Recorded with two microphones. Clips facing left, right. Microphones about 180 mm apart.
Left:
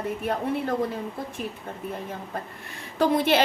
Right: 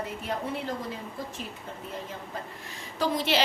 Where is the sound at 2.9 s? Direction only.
55° left (ahead or behind).